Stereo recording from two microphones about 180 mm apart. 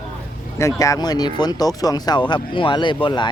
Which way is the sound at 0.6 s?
15° left (ahead or behind).